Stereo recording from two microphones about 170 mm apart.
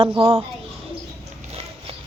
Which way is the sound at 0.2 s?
20° right (ahead or behind).